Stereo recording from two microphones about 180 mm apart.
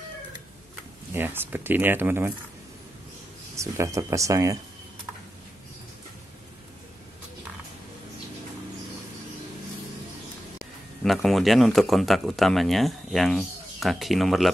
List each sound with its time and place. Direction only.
1.1 s speech: 10° right (ahead or behind)
3.5 s speech: 15° right (ahead or behind)
11.1 s speech: centre (ahead or behind)